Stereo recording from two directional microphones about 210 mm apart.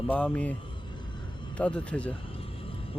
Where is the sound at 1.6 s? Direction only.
5° left (ahead or behind).